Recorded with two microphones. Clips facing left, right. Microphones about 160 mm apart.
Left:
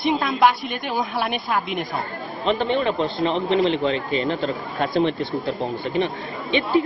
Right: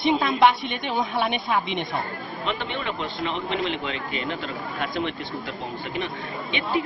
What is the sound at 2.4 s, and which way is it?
A man's voice, 35° left (ahead or behind).